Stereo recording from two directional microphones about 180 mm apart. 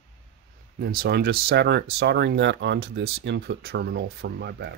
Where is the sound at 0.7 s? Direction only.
60° right (ahead or behind).